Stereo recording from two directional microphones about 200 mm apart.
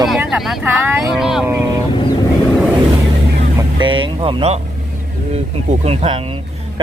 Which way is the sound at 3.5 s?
25° right (ahead or behind).